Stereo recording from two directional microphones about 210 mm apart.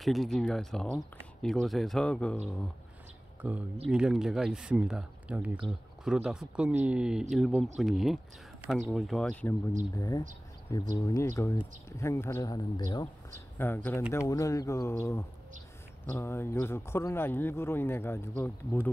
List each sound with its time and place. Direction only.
0.0 s speech: centre (ahead or behind)
3.9 s speech: 5° right (ahead or behind)